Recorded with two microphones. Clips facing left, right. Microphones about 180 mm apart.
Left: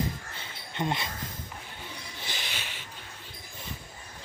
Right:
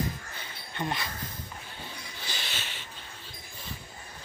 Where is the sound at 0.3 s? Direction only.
25° left (ahead or behind).